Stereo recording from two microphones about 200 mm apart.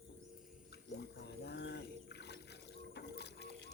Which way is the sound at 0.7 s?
60° left (ahead or behind).